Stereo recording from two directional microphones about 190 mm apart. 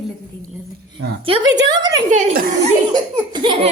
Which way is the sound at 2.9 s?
20° right (ahead or behind).